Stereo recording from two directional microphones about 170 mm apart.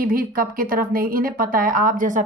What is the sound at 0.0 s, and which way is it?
A woman's voice, 55° right (ahead or behind).